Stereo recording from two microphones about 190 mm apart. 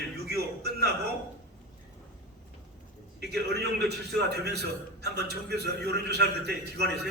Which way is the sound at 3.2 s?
60° right (ahead or behind).